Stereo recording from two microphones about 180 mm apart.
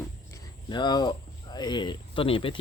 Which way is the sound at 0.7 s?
25° left (ahead or behind).